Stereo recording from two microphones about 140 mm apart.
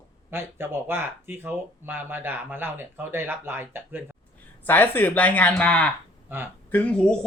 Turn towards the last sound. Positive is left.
turn(degrees=10)  # may be behind; listen again after turning